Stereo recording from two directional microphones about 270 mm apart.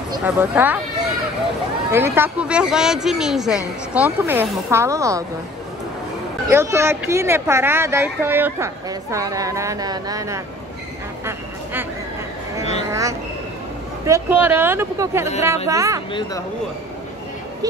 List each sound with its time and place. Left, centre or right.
0.1 s speech: centre
1.9 s speech: centre
6.5 s speech: centre
14.0 s speech: centre
16.1 s speech: centre